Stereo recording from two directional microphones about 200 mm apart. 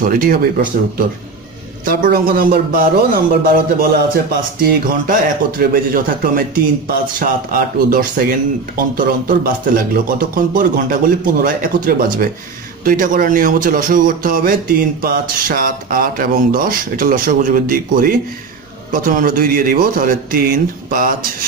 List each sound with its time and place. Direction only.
0.0 s speech: 45° right (ahead or behind)